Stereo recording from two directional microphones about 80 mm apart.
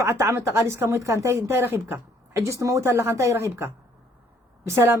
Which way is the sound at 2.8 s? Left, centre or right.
Right.